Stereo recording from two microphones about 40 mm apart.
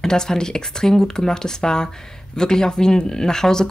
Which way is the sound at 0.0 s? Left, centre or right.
Centre.